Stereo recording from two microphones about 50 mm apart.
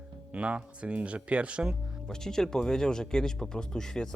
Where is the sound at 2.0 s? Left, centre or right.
Centre.